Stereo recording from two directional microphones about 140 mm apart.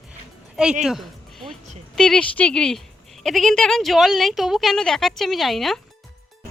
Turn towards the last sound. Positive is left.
turn(degrees=0)  # may be behind; listen again after turning